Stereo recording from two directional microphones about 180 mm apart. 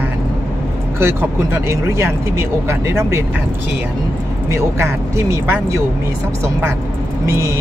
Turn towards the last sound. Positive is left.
turn(degrees=-15)  # may be behind; listen again after turning